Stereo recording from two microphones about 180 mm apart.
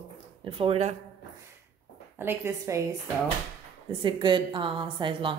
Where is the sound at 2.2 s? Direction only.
15° right (ahead or behind).